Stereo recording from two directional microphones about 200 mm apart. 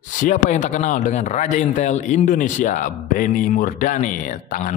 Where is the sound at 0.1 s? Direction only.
40° left (ahead or behind).